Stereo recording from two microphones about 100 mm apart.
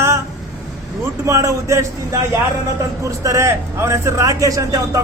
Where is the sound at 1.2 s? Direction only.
30° right (ahead or behind).